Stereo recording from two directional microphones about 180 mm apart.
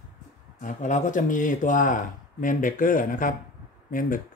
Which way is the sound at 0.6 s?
45° left (ahead or behind).